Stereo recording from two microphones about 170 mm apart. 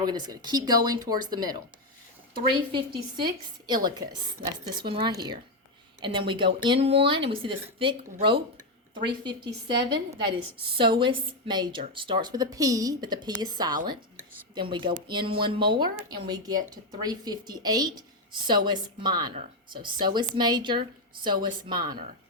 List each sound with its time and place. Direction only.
0.0 s speech: 25° right (ahead or behind)
2.7 s speech: 25° right (ahead or behind)